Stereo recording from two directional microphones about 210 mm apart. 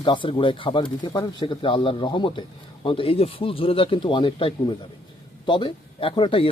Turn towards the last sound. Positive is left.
turn(degrees=25)  # may be behind; listen again after turning